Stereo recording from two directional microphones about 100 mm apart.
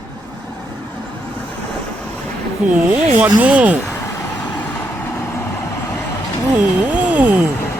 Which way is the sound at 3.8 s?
30° left (ahead or behind).